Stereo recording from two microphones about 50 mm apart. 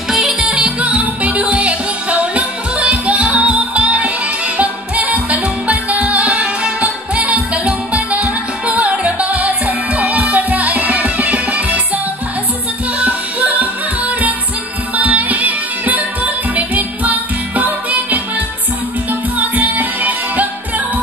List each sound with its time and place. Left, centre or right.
0.1 s music: centre
0.5 s music: right
13.0 s music: right
19.3 s music: right